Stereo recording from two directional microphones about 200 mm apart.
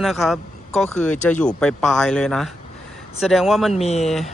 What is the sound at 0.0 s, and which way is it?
Speech, centre (ahead or behind).